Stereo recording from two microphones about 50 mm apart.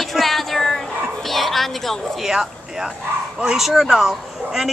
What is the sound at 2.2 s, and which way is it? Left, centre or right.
A woman's voice, centre.